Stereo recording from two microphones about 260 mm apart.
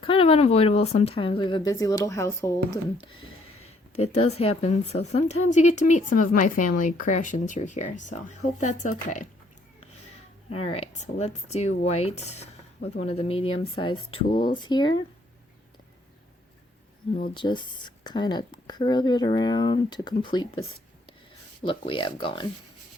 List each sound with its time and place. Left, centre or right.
0.0 s speech: left
10.5 s speech: left
17.2 s speech: centre